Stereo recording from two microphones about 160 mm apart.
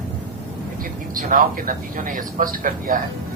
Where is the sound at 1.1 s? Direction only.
60° right (ahead or behind).